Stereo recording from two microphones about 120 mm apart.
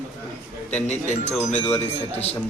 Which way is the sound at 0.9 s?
65° left (ahead or behind).